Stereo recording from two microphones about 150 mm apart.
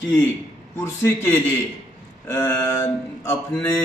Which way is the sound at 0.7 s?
15° left (ahead or behind).